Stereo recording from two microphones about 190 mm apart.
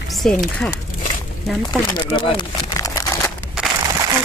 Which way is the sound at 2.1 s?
25° left (ahead or behind).